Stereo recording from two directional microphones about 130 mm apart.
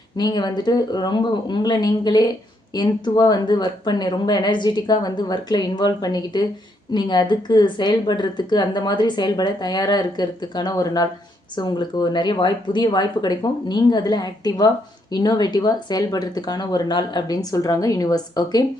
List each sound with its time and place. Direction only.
0.2 s speech: 35° left (ahead or behind)